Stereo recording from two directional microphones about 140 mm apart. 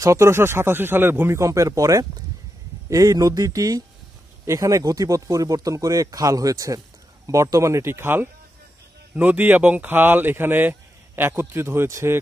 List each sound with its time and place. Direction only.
0.0 s speech: 20° right (ahead or behind)